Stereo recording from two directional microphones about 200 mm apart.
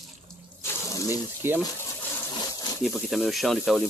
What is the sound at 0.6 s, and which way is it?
Water, 15° left (ahead or behind).